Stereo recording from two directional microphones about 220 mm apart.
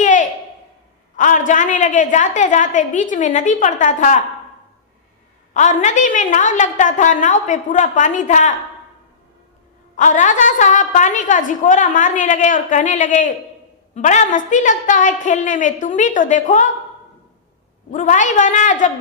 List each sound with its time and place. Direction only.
0.0 s a sound: 35° left (ahead or behind)
1.1 s a woman's voice: 35° left (ahead or behind)
5.5 s a woman's voice: 35° left (ahead or behind)
10.0 s a woman's voice: 35° left (ahead or behind)
17.9 s a woman's voice: 35° left (ahead or behind)